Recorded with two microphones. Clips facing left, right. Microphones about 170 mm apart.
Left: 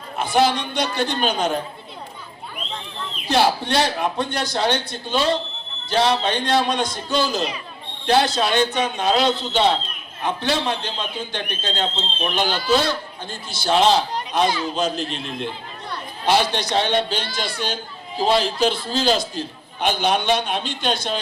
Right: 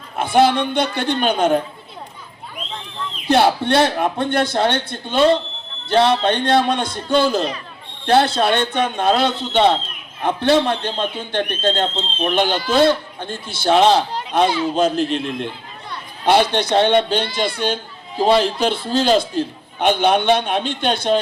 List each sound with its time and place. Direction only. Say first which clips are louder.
0.3 s a man's voice: right 4 dB; 55° right (ahead or behind)
3.2 s a man's voice: right 4 dB; 55° right (ahead or behind)
14.4 s a man's voice: right 4 dB; 25° right (ahead or behind)
14.8 s a man's voice: right 6 dB; 55° right (ahead or behind)